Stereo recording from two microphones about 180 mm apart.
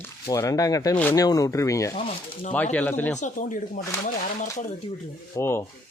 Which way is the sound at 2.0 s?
35° left (ahead or behind).